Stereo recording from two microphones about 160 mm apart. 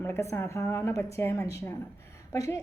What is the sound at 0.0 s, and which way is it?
A woman's voice, 15° left (ahead or behind).